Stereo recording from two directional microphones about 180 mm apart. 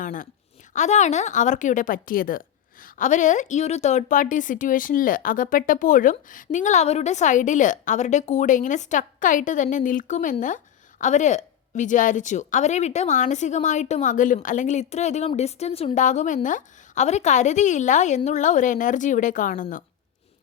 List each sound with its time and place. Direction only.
0.0 s a woman's voice: 45° left (ahead or behind)